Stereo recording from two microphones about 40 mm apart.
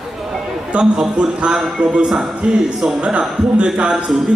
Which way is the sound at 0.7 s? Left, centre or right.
Right.